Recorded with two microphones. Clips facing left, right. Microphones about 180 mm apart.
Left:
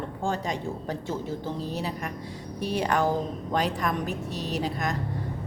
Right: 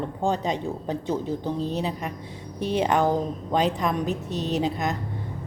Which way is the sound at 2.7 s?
20° right (ahead or behind).